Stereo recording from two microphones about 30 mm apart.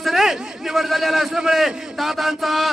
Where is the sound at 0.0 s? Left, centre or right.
Centre.